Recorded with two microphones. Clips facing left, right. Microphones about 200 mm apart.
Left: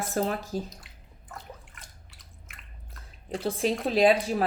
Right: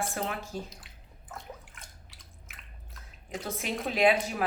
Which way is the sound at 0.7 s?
Centre (ahead or behind).